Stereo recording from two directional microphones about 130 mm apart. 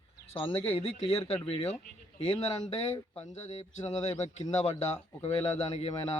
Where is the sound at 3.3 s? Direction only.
60° left (ahead or behind).